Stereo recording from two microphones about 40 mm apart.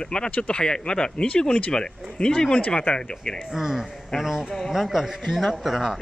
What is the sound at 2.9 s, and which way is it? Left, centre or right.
Speech, left.